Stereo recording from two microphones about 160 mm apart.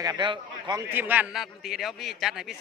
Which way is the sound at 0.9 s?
10° right (ahead or behind).